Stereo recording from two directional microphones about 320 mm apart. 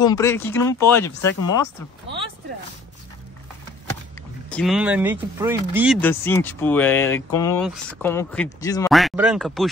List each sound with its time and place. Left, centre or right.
0.0 s speech: centre
4.5 s speech: centre
5.9 s speech: centre
8.9 s speech: centre